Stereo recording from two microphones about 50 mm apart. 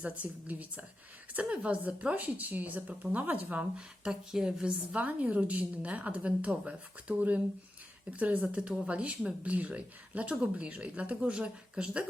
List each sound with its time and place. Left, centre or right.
0.0 s speech: right
3.8 s a woman's voice: centre
4.9 s speech: right